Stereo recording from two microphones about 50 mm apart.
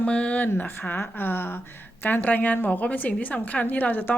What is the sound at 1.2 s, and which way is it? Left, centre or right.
A woman's voice, left.